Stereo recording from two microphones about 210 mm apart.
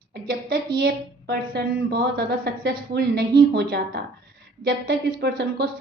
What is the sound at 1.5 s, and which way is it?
A woman's voice, 45° right (ahead or behind).